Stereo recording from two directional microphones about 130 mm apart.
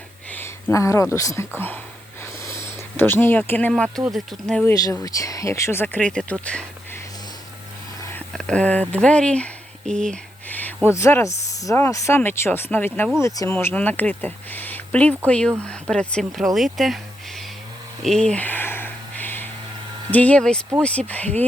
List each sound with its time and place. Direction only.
0.3 s speech: 15° left (ahead or behind)
2.4 s a sound: 20° left (ahead or behind)
4.1 s speech: centre (ahead or behind)
4.7 s speech: 25° left (ahead or behind)
5.8 s speech: 10° left (ahead or behind)
8.3 s speech: 5° left (ahead or behind)
13.2 s speech: 25° left (ahead or behind); by 17.4 s centre (ahead or behind)
18.0 s a sound: 5° left (ahead or behind)
20.1 s speech: 10° left (ahead or behind)